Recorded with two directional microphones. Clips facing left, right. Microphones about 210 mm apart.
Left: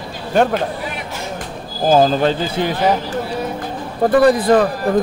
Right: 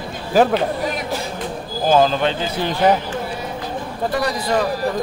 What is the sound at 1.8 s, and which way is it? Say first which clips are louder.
Speech: left 3 dB; 40° left (ahead or behind).